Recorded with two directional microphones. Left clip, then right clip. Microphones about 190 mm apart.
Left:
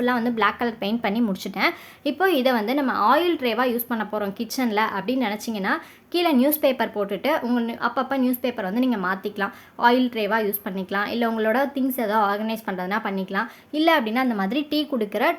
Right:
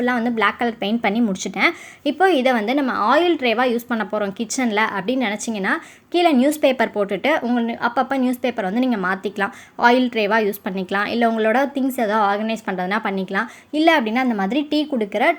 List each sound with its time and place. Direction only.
0.0 s a woman's voice: 15° right (ahead or behind)